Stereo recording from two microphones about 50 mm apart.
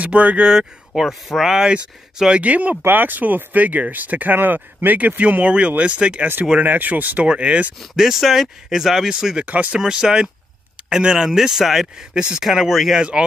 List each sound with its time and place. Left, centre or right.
0.0 s speech: right
0.5 s speech: centre
2.3 s speech: right
2.9 s speech: right
6.6 s speech: right
7.9 s speech: centre
9.5 s speech: right
9.8 s speech: centre